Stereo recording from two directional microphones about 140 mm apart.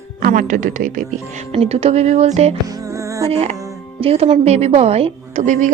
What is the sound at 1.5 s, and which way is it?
Speech, 45° right (ahead or behind).